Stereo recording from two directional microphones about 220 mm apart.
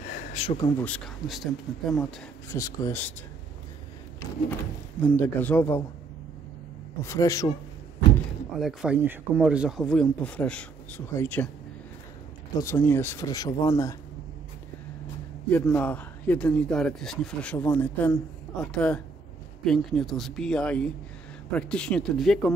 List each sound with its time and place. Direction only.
0.1 s a sound: 30° left (ahead or behind)
0.7 s speech: 5° left (ahead or behind)
2.5 s speech: 15° left (ahead or behind)
5.0 s speech: 5° left (ahead or behind)
7.0 s speech: 15° left (ahead or behind)
8.5 s speech: 5° right (ahead or behind)
12.5 s speech: 10° left (ahead or behind)
15.5 s speech: 5° left (ahead or behind)